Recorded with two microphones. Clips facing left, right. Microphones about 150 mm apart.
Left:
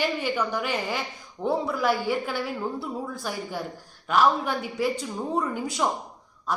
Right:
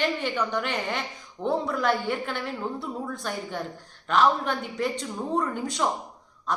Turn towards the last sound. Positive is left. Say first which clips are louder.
# even
turn(degrees=5)  # may be behind; listen again after turning